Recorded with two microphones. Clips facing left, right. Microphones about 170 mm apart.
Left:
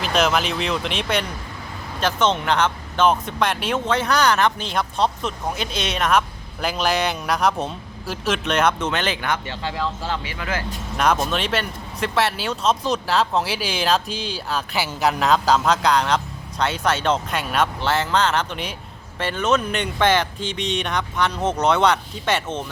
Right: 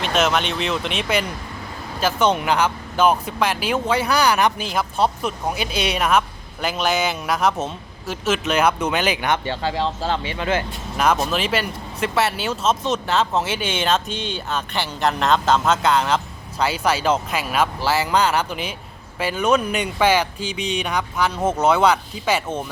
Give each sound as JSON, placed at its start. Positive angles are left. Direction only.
{"t": 0.0, "sound": "speech", "side_deg": 0}
{"t": 9.3, "sound": "speech", "side_deg": -30}
{"t": 10.9, "sound": "speech", "side_deg": -5}